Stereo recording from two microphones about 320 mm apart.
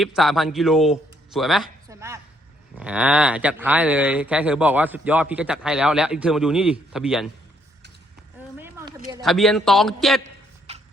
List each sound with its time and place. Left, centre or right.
0.0 s a man's voice: centre
8.5 s a sound: centre
9.2 s speech: centre
10.7 s music: centre